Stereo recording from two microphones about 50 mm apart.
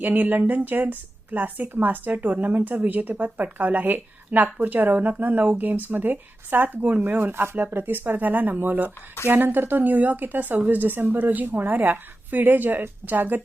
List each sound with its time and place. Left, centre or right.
0.0 s speech: right